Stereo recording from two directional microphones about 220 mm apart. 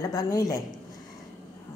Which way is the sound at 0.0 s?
15° left (ahead or behind).